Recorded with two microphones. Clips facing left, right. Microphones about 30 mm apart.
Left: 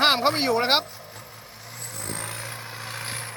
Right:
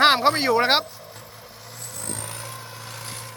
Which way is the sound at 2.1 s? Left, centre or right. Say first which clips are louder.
Left 1 dB; centre.